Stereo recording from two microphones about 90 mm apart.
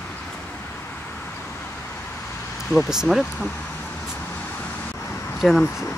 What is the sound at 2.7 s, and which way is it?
Speech, 5° right (ahead or behind).